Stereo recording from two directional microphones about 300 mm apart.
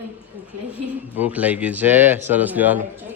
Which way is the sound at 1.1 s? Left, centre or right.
Centre.